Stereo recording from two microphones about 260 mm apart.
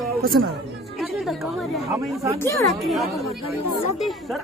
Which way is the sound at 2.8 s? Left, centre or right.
Centre.